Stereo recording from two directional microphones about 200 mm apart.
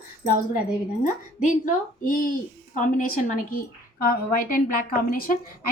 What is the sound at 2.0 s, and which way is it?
A woman's voice, 45° left (ahead or behind).